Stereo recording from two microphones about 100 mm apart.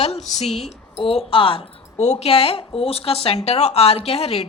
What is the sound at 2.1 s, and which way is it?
A woman's voice, 90° left.